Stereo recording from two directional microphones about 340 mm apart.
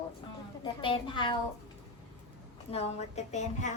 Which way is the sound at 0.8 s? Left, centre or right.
Centre.